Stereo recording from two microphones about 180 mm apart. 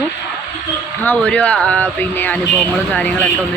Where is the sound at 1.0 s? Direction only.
10° left (ahead or behind).